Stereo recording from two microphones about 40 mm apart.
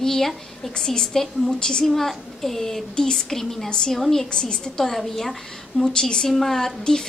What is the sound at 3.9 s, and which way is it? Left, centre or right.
Speech, centre.